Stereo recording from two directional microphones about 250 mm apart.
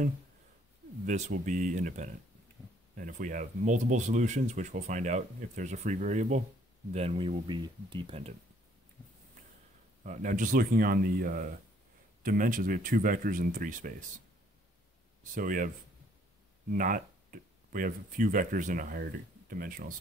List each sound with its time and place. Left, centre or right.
1.0 s speech: right
10.0 s speech: right
15.3 s speech: right
16.7 s speech: right